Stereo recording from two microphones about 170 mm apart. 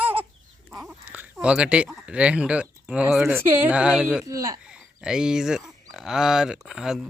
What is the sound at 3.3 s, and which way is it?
Speech, 10° right (ahead or behind).